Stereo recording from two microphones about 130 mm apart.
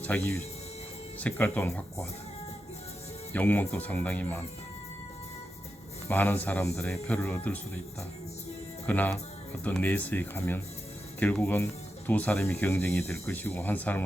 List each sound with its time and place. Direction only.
0.0 s speech: 10° left (ahead or behind)
3.3 s speech: 15° left (ahead or behind)
6.1 s speech: 15° left (ahead or behind)
8.9 s speech: 15° left (ahead or behind)